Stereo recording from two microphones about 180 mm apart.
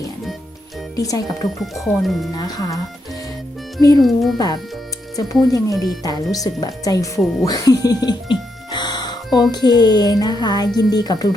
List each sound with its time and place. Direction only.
0.9 s a woman's voice: 20° left (ahead or behind)
1.5 s speech: centre (ahead or behind)
2.3 s a woman's voice: 20° left (ahead or behind)
3.8 s a woman's voice: 20° left (ahead or behind)
4.0 s speech: centre (ahead or behind)
4.4 s a woman's voice: 20° left (ahead or behind)
8.7 s music: 25° left (ahead or behind)
9.5 s a woman's voice: 20° left (ahead or behind)